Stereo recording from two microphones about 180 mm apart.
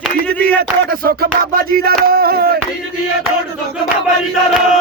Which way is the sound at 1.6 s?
55° right (ahead or behind).